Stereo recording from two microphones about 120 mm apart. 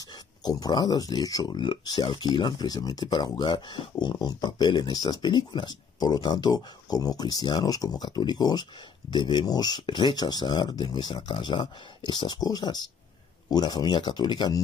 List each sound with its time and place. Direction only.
0.0 s speech: 35° left (ahead or behind)
4.1 s speech: 35° left (ahead or behind)